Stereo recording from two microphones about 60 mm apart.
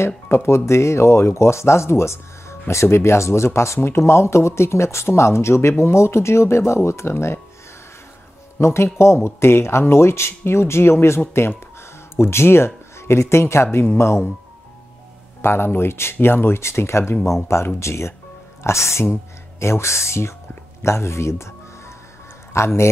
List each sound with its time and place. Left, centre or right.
0.0 s speech: left
8.5 s speech: left
15.4 s speech: left